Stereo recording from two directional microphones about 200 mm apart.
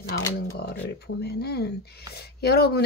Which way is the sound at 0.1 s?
55° left (ahead or behind).